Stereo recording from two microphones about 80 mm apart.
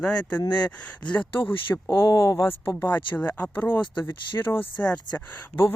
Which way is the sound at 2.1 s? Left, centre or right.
Left.